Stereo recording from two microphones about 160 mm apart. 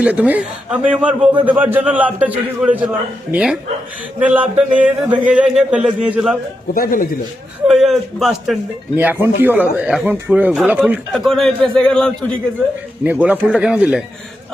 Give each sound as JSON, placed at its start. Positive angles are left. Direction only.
{"t": 0.0, "sound": "a man's voice", "side_deg": -10}
{"t": 6.7, "sound": "speech", "side_deg": 60}
{"t": 7.7, "sound": "a man's voice", "side_deg": 0}
{"t": 9.0, "sound": "speech", "side_deg": -10}
{"t": 13.1, "sound": "speech", "side_deg": -10}